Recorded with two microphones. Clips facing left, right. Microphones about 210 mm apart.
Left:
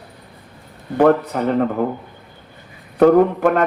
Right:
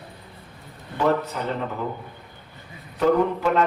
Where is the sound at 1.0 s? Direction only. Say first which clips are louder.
Left 8 dB; 55° left (ahead or behind).